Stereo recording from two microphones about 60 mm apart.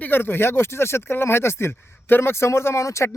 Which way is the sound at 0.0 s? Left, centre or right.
Left.